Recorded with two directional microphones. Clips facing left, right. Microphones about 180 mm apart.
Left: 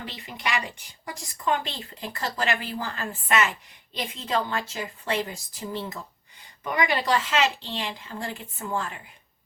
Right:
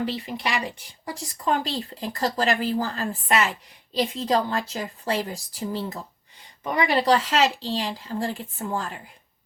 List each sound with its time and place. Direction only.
0.0 s speech: 35° right (ahead or behind)